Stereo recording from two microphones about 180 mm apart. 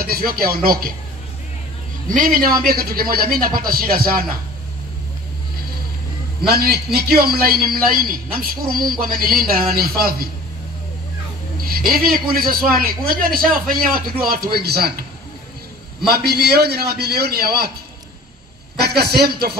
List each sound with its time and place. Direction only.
0.0 s a man's voice: 55° right (ahead or behind)
2.0 s speech: 50° right (ahead or behind)
6.4 s a man's voice: 60° right (ahead or behind)
11.5 s a man's voice: 55° right (ahead or behind)
16.1 s a man's voice: 60° right (ahead or behind)
18.8 s a man's voice: 60° right (ahead or behind)